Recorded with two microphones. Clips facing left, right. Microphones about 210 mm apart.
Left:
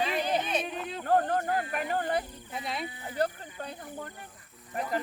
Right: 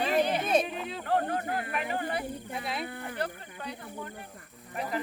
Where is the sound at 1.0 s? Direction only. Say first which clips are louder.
Left 3 dB; 45° left (ahead or behind).